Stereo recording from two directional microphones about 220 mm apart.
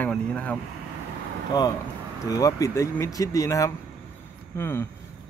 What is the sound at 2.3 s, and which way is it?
Speech, 15° left (ahead or behind).